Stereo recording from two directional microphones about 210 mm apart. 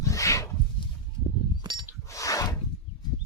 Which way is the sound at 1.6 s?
20° right (ahead or behind).